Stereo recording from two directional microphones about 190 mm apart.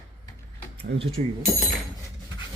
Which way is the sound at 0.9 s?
70° right (ahead or behind).